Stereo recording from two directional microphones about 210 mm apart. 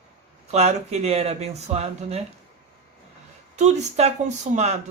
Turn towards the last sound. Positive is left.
turn(degrees=-30)  # may be behind; listen again after turning